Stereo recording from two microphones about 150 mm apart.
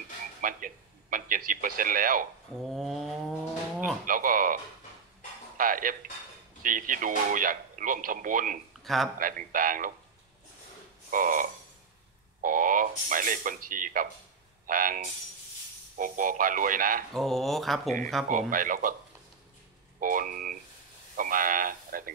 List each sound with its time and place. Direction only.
0.4 s speech: 65° right (ahead or behind)
2.5 s a sound: centre (ahead or behind)
4.0 s speech: 65° right (ahead or behind)
5.6 s speech: 65° right (ahead or behind)
8.8 s speech: centre (ahead or behind)
9.2 s speech: 65° right (ahead or behind)
11.1 s frog: 65° right (ahead or behind)
12.4 s speech: 65° right (ahead or behind)
16.0 s speech: 65° right (ahead or behind)
17.1 s a sound: centre (ahead or behind)
18.5 s speech: 65° right (ahead or behind)
20.0 s speech: 65° right (ahead or behind)